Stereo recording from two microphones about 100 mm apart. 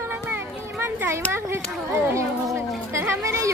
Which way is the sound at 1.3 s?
25° right (ahead or behind).